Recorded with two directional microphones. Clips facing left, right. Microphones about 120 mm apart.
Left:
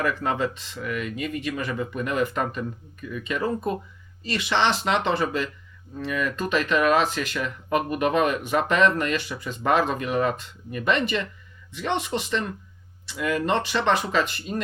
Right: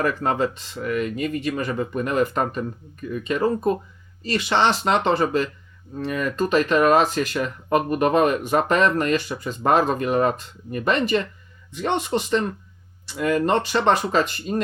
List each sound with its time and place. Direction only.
0.0 s speech: 40° right (ahead or behind)